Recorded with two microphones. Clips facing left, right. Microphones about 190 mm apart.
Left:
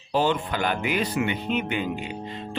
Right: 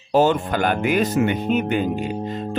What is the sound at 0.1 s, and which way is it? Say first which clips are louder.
Speech: right 6 dB; 45° right (ahead or behind).